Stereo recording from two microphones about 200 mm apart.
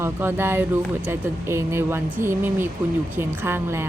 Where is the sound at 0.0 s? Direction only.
10° right (ahead or behind).